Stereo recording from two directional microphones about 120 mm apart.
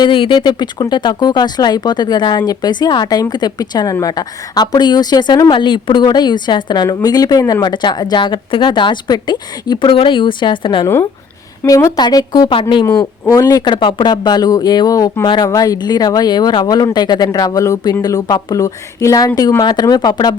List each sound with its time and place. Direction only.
0.0 s a woman's voice: 40° left (ahead or behind)
11.6 s speech: 25° left (ahead or behind)
11.9 s a woman's voice: 35° left (ahead or behind)
12.8 s a woman's voice: 30° left (ahead or behind)